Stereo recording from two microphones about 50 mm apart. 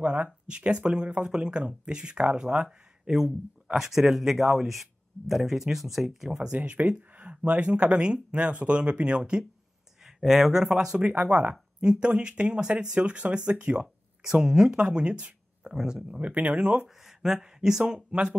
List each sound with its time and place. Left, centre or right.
0.0 s speech: right
6.5 s speech: right
10.0 s speech: centre
11.0 s speech: right
11.8 s speech: centre
14.2 s speech: centre
14.9 s speech: right
15.6 s speech: centre
16.1 s speech: right
16.8 s speech: centre; by 18.4 s right